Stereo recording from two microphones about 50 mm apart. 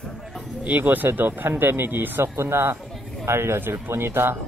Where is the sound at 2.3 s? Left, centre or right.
Right.